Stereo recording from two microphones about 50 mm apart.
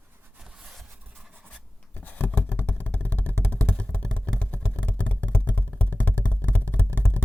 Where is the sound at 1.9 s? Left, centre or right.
Left.